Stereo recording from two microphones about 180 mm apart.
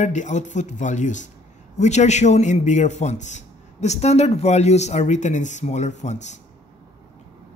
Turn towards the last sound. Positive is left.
turn(degrees=40)  # may be behind; listen again after turning